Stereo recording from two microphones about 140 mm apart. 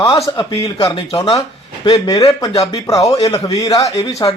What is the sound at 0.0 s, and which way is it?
Speech, 30° left (ahead or behind).